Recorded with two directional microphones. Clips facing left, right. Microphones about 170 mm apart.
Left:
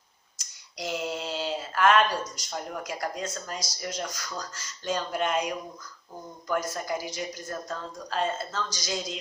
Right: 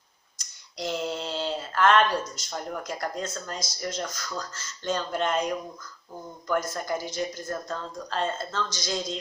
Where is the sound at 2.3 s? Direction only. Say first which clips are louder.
Right 1 dB; 10° left (ahead or behind).